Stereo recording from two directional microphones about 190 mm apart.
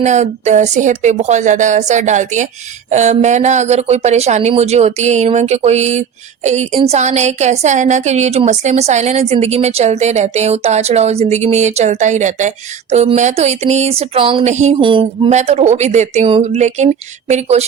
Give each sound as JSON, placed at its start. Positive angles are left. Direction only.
{"t": 0.0, "sound": "speech", "side_deg": -35}